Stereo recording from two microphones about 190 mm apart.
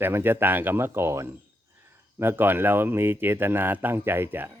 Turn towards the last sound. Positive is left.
turn(degrees=-10)  # may be behind; listen again after turning